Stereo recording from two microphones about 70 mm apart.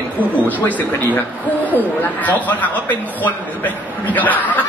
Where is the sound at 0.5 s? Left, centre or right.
Left.